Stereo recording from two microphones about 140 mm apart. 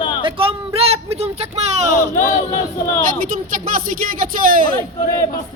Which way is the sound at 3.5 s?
75° right (ahead or behind).